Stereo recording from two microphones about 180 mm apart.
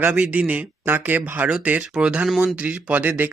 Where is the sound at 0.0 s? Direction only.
10° right (ahead or behind).